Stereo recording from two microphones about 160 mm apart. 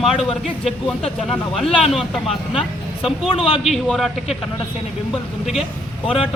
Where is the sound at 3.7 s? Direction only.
Centre (ahead or behind).